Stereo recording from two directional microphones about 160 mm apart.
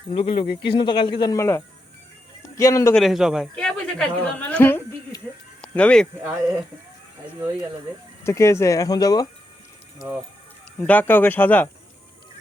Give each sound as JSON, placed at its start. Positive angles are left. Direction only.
{"t": 0.1, "sound": "speech", "side_deg": 35}
{"t": 2.9, "sound": "a woman's voice", "side_deg": 0}
{"t": 8.2, "sound": "speech", "side_deg": 15}
{"t": 10.8, "sound": "speech", "side_deg": 10}